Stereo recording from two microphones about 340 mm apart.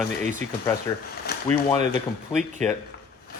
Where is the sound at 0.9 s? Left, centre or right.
Centre.